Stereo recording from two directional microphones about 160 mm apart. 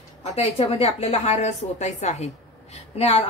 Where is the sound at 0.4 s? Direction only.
40° left (ahead or behind).